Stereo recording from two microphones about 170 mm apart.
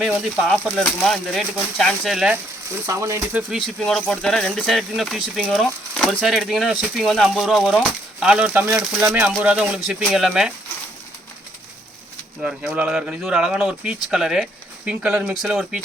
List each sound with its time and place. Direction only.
0.0 s speech: 5° right (ahead or behind)
2.8 s speech: 15° right (ahead or behind)
3.5 s speech: centre (ahead or behind)
12.4 s speech: 5° right (ahead or behind)